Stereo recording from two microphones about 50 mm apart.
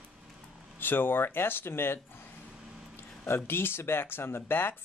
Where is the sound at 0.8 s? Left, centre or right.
Left.